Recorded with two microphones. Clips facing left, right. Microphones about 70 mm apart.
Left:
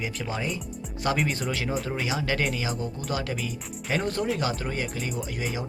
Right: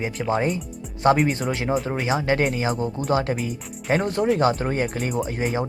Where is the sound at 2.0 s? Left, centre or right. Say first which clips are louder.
Right 7 dB; right.